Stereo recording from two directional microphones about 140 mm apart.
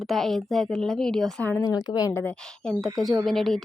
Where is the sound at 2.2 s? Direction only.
10° left (ahead or behind).